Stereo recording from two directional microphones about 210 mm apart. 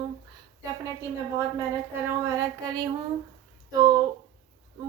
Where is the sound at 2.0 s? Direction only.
15° right (ahead or behind).